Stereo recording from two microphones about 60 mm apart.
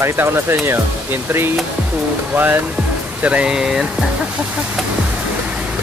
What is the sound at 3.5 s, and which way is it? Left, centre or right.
Speech, centre.